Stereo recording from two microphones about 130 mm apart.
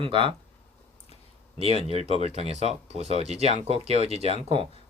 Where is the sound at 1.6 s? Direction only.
50° right (ahead or behind).